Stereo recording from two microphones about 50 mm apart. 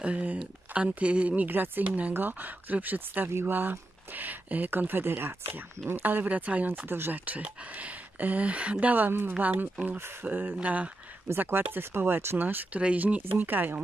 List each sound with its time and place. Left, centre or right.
0.0 s speech: right
1.5 s speech: right
5.9 s speech: right
6.9 s speech: right
7.2 s speech: right
8.9 s speech: right
11.3 s speech: right
12.7 s speech: right
13.4 s speech: right